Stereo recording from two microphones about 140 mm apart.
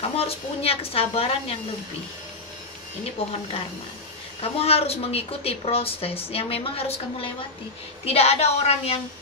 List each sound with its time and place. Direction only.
0.0 s a woman's voice: 45° left (ahead or behind)
3.2 s speech: 40° left (ahead or behind)
4.4 s a woman's voice: 45° left (ahead or behind)